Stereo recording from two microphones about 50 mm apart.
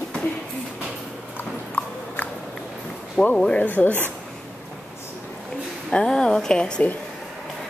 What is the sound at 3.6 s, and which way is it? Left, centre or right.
Speech, left.